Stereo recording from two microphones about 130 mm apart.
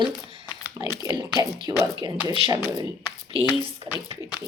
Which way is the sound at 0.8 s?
30° right (ahead or behind).